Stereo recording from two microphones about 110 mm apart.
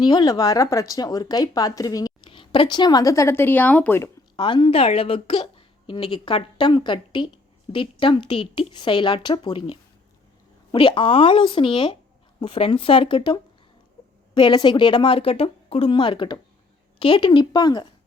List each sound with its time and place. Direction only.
0.0 s speech: 40° left (ahead or behind)
2.2 s speech: 50° left (ahead or behind); by 4.1 s 20° left (ahead or behind)
4.4 s a woman's voice: 45° left (ahead or behind)
10.8 s a woman's voice: 55° left (ahead or behind)
15.9 s a woman's voice: 45° left (ahead or behind)